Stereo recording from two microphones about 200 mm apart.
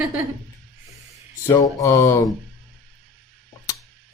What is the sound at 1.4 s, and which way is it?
Speech, 15° left (ahead or behind).